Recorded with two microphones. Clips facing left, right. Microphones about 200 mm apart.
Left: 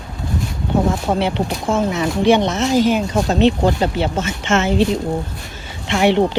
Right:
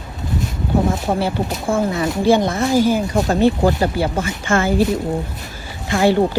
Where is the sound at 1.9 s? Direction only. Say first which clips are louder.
Left 1 dB; 20° left (ahead or behind).